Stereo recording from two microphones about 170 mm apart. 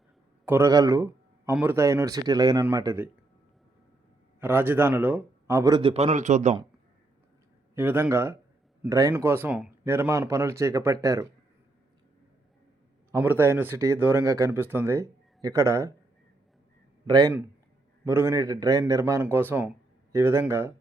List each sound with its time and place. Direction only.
0.4 s speech: 15° right (ahead or behind)
4.4 s speech: 10° right (ahead or behind)
5.9 s a man's voice: 40° right (ahead or behind)
7.8 s speech: 10° right (ahead or behind)
13.1 s speech: 10° right (ahead or behind)
17.1 s a man's voice: 25° right (ahead or behind)